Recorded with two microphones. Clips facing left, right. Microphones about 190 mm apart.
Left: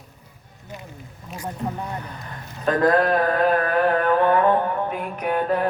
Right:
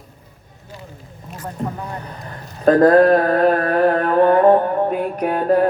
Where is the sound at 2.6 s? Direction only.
40° right (ahead or behind).